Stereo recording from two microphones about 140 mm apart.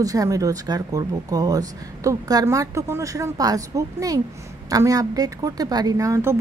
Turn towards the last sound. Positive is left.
turn(degrees=-20)  # may be behind; listen again after turning